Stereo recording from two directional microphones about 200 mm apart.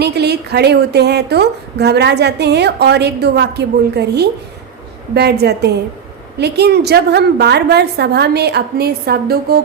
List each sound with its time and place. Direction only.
0.0 s a woman's voice: 55° right (ahead or behind)